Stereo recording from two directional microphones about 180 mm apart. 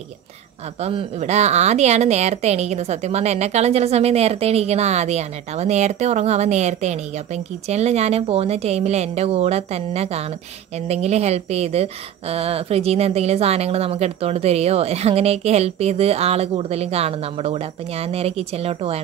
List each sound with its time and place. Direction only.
0.7 s a woman's voice: 35° right (ahead or behind)